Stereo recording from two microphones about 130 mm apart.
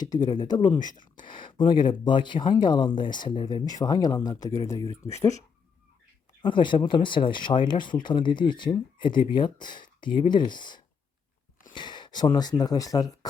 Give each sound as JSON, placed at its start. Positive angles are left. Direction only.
{"t": 0.3, "sound": "speech", "side_deg": 30}
{"t": 6.4, "sound": "speech", "side_deg": 40}